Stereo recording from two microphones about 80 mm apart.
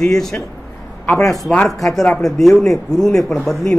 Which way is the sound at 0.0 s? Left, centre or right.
Centre.